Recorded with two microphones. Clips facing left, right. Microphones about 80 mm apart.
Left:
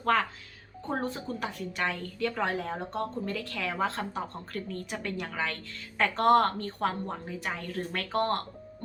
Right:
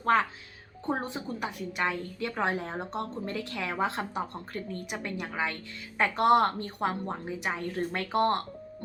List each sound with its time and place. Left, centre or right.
0.0 s a woman's voice: right